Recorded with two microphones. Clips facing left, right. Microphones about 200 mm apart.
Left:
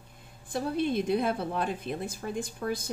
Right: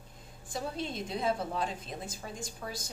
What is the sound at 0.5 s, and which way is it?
A woman's voice, 60° left (ahead or behind).